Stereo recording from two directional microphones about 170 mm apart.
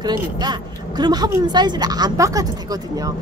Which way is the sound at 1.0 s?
25° right (ahead or behind).